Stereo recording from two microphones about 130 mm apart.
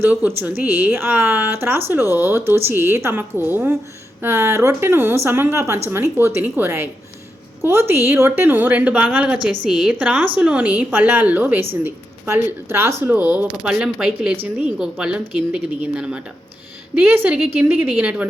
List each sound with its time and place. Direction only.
0.0 s a woman's voice: 15° right (ahead or behind)